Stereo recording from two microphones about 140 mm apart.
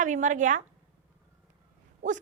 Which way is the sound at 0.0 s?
60° right (ahead or behind).